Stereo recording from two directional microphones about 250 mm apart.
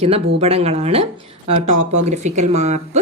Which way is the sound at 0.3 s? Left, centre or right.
Right.